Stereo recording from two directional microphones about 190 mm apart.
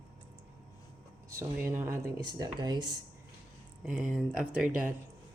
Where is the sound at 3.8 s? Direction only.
5° right (ahead or behind).